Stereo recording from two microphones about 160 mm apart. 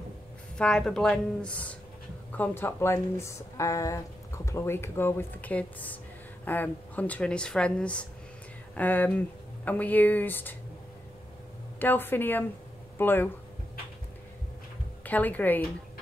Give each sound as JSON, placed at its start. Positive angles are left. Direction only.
{"t": 0.6, "sound": "a woman's voice", "side_deg": 5}
{"t": 11.8, "sound": "speech", "side_deg": 15}
{"t": 15.0, "sound": "speech", "side_deg": 10}